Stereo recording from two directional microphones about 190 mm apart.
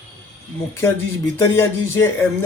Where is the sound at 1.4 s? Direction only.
15° left (ahead or behind).